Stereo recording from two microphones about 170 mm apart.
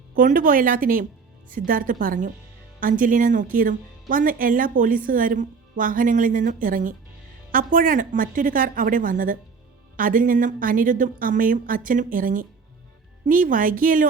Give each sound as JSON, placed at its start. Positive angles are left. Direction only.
{"t": 0.1, "sound": "a woman's voice", "side_deg": -50}